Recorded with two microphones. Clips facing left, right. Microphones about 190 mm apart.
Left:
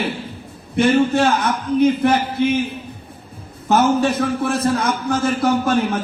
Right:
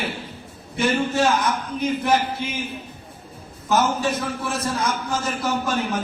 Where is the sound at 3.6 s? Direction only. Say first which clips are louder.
Left 5 dB; 60° left (ahead or behind).